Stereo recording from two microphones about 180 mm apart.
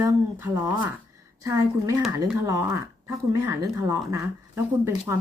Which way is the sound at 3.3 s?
15° right (ahead or behind).